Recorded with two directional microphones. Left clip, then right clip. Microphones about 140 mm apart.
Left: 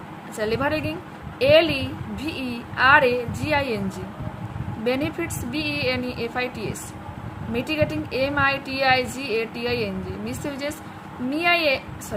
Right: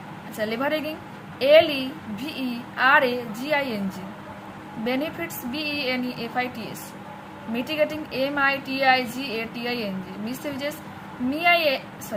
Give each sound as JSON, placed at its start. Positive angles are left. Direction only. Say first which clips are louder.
{"t": 0.3, "sound": "a woman's voice", "louder": "left 2 dB", "side_deg": 25}
{"t": 4.9, "sound": "a woman's voice", "louder": "left 3 dB", "side_deg": 20}